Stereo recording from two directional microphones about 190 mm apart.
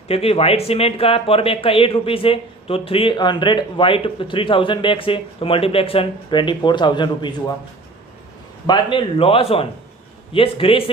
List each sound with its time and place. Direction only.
0.1 s speech: 30° left (ahead or behind)
8.6 s speech: 25° left (ahead or behind)